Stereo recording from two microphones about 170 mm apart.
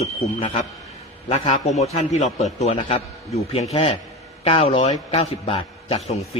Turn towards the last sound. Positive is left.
turn(degrees=30)  # may be behind; listen again after turning